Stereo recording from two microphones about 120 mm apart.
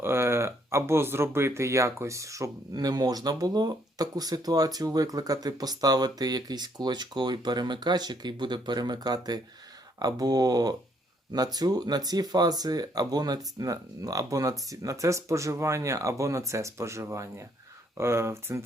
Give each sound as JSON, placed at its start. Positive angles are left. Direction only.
{"t": 0.0, "sound": "speech", "side_deg": -20}